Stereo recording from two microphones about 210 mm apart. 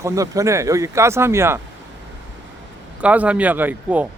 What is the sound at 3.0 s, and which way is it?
Speech, 5° right (ahead or behind).